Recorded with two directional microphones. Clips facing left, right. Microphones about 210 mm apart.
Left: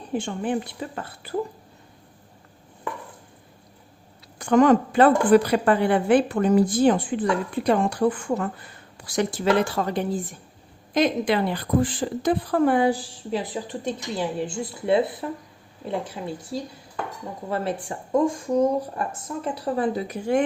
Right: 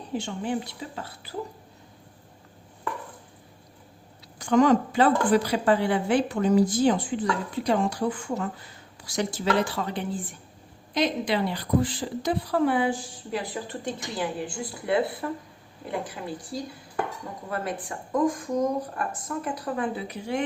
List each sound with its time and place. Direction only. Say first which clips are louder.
0.1 s a woman's voice: left 3 dB; 55° left (ahead or behind)
4.4 s a woman's voice: left 3 dB; 55° left (ahead or behind); by 13.1 s 40° left (ahead or behind)
13.3 s speech: left 3 dB; 20° left (ahead or behind)
17.5 s speech: left 4 dB; 30° left (ahead or behind); by 20.4 s 50° left (ahead or behind)